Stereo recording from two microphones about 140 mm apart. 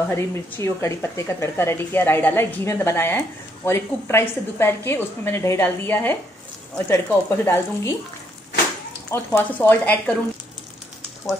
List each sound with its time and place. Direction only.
0.1 s speech: 20° left (ahead or behind)
9.1 s speech: 15° left (ahead or behind)